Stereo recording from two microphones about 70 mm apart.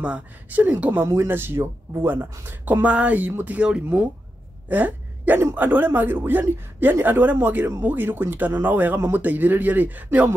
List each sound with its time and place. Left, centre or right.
0.0 s speech: right
1.0 s speech: right
2.6 s speech: right
4.6 s a sound: right
5.4 s speech: right